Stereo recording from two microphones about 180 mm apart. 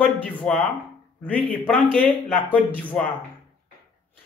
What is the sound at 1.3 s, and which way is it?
A man's voice, 10° left (ahead or behind).